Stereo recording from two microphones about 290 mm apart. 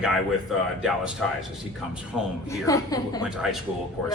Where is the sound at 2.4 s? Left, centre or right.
Centre.